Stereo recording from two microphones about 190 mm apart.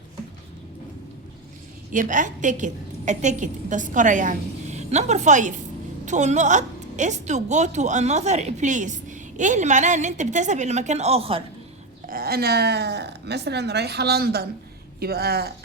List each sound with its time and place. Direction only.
1.9 s a woman's voice: 40° right (ahead or behind)
12.0 s speech: 50° right (ahead or behind)